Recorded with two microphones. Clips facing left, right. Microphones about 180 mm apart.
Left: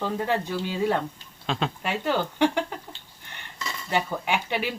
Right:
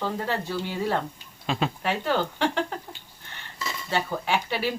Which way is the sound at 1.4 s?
5° right (ahead or behind).